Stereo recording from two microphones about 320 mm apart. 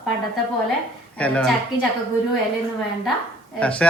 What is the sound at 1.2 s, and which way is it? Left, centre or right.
Speech, centre.